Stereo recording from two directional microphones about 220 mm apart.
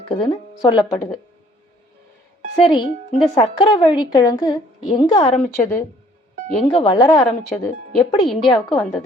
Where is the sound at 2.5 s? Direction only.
25° left (ahead or behind).